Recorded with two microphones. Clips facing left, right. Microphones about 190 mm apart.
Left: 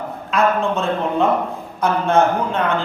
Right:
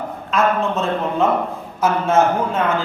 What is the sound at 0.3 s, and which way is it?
A man's voice, centre (ahead or behind).